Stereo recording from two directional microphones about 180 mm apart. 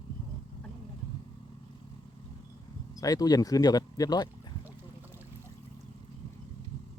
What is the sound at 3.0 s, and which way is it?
Speech, 20° left (ahead or behind).